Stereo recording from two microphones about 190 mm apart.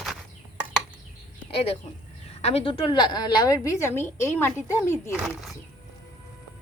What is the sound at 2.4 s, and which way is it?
A woman's voice, 30° left (ahead or behind).